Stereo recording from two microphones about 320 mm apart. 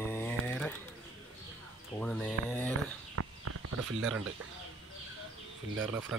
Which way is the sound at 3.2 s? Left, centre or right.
Right.